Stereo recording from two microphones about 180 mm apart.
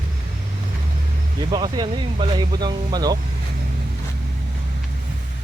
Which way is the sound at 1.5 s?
25° right (ahead or behind).